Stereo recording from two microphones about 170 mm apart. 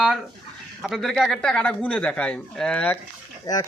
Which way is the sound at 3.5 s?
20° left (ahead or behind).